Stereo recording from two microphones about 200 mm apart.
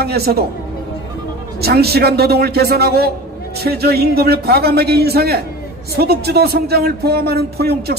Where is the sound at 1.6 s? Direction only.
50° right (ahead or behind).